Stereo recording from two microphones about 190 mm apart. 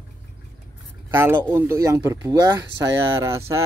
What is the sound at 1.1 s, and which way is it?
Speech, 10° right (ahead or behind).